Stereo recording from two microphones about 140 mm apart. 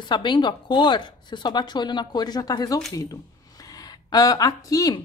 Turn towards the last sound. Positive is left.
turn(degrees=25)  # may be behind; listen again after turning